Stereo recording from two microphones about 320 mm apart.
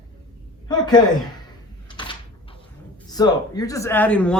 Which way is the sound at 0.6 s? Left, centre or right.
Centre.